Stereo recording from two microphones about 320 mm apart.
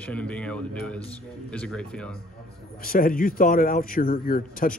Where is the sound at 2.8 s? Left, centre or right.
Left.